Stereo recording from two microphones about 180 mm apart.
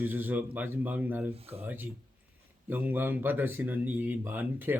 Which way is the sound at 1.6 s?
10° right (ahead or behind).